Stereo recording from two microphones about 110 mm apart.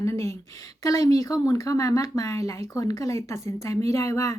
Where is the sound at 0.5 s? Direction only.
30° left (ahead or behind).